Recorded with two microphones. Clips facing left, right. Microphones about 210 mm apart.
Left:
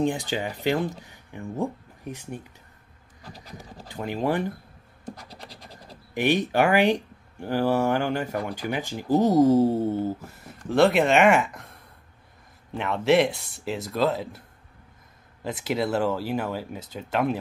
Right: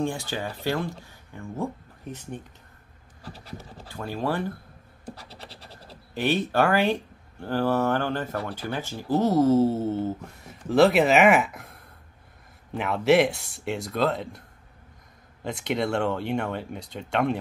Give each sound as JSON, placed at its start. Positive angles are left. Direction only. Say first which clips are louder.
{"t": 0.0, "sound": "speech", "louder": "left 3 dB", "side_deg": 15}
{"t": 3.8, "sound": "speech", "louder": "left 3 dB", "side_deg": 15}
{"t": 6.1, "sound": "speech", "louder": "left 1 dB", "side_deg": 15}
{"t": 15.4, "sound": "speech", "louder": "even", "side_deg": 5}